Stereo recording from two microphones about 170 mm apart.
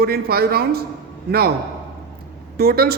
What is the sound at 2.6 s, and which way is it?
Speech, 65° right (ahead or behind).